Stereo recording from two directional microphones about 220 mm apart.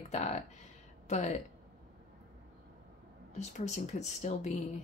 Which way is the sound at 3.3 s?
30° left (ahead or behind).